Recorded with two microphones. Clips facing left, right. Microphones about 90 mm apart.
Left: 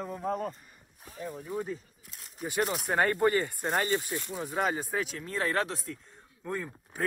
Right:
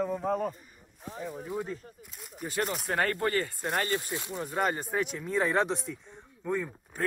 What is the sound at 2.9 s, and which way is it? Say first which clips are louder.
Speech: left 3 dB; 15° left (ahead or behind).